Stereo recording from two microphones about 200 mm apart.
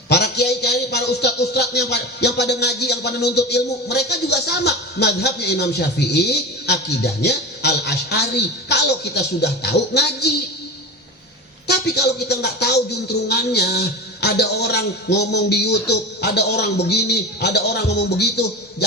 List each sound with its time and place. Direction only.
0.1 s a man's voice: 55° left (ahead or behind)
11.7 s a man's voice: 55° left (ahead or behind)